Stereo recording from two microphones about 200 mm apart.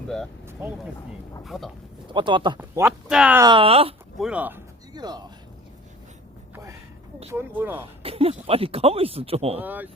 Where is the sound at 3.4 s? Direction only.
25° right (ahead or behind).